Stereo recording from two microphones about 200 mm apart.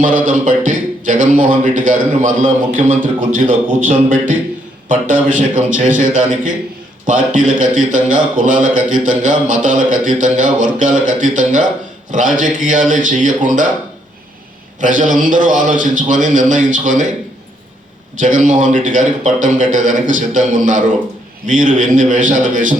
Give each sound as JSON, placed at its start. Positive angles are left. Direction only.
{"t": 0.0, "sound": "speech", "side_deg": -40}
{"t": 14.8, "sound": "speech", "side_deg": -40}
{"t": 18.2, "sound": "speech", "side_deg": -40}